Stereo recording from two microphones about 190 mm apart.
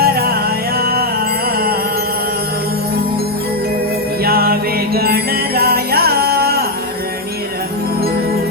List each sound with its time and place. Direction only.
0.0 s music: 55° right (ahead or behind)
4.2 s music: 55° right (ahead or behind)